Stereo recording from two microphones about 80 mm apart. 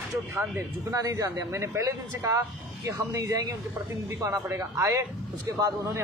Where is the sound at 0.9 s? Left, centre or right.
Right.